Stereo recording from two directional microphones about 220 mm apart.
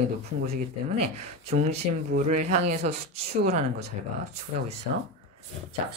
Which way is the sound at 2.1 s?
30° right (ahead or behind).